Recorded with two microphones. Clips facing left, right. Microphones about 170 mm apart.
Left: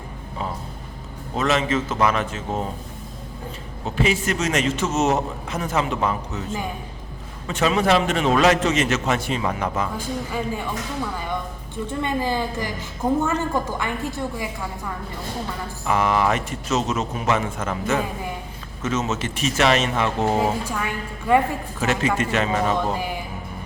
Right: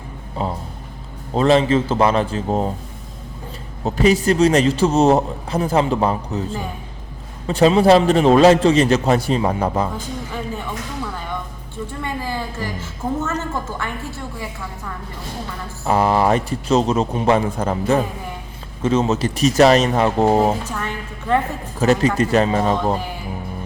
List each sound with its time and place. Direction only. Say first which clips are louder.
0.4 s a man's voice: right 5 dB; 30° right (ahead or behind)
3.8 s a man's voice: right 7 dB; 40° right (ahead or behind)
11.9 s a woman's voice: left 4 dB; 20° left (ahead or behind)
15.8 s a man's voice: right 4 dB; 35° right (ahead or behind)
20.7 s a woman's voice: even; 10° left (ahead or behind)
21.8 s a man's voice: right 6 dB; 35° right (ahead or behind)